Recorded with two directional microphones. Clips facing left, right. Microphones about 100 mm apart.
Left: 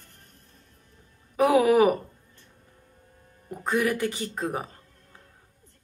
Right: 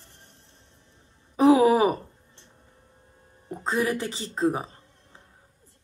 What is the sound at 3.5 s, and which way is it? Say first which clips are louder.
Speech: even; 25° right (ahead or behind).